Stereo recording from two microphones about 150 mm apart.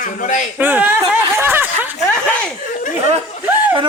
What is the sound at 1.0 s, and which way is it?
Snicker, 15° right (ahead or behind).